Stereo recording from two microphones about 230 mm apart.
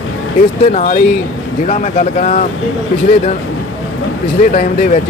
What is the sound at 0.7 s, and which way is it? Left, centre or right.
Speech, left.